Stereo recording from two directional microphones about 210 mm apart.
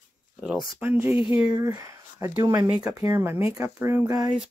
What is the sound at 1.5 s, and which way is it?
Speech, 20° right (ahead or behind).